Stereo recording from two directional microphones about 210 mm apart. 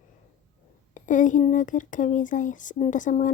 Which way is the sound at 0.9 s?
35° left (ahead or behind).